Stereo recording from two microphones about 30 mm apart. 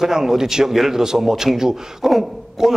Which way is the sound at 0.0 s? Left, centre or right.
Centre.